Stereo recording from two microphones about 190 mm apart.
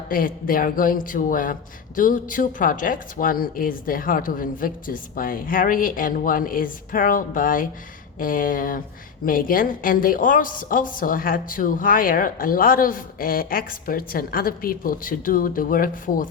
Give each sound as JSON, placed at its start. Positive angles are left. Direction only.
{"t": 0.1, "sound": "a woman's voice", "side_deg": 50}